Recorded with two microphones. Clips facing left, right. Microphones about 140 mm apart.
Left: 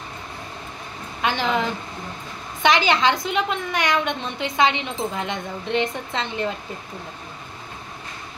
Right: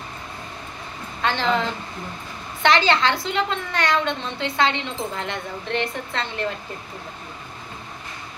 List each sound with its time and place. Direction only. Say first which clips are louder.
1.2 s a woman's voice: even; 15° left (ahead or behind)